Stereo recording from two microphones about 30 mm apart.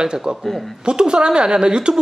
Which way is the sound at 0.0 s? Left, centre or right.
Right.